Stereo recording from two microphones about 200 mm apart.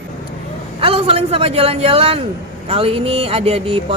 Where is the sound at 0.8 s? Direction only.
30° right (ahead or behind).